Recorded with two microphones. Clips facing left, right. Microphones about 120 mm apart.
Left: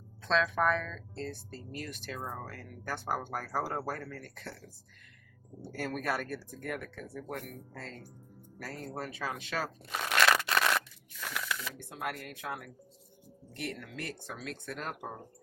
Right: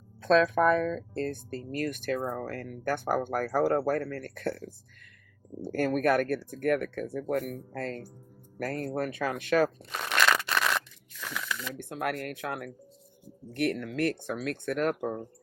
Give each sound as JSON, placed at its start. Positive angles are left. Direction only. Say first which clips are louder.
{"t": 0.2, "sound": "speech", "louder": "right 7 dB", "side_deg": -50}
{"t": 5.7, "sound": "speech", "louder": "right 9 dB", "side_deg": -55}
{"t": 10.0, "sound": "a sound", "louder": "right 1 dB", "side_deg": 0}
{"t": 11.7, "sound": "speech", "louder": "right 6 dB", "side_deg": -55}